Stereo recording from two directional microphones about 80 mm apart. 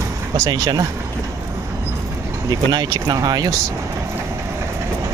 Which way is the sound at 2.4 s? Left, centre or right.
Right.